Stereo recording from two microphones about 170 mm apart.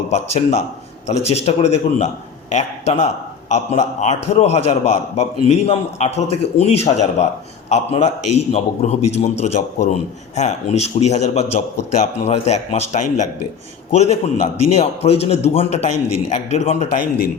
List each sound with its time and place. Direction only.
0.1 s a man's voice: 40° left (ahead or behind)